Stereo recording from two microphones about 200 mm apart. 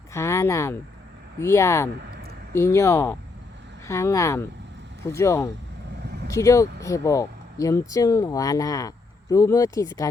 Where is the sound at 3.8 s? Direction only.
15° left (ahead or behind).